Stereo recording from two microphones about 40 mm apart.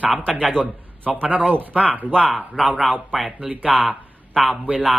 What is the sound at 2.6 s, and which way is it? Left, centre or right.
Speech, right.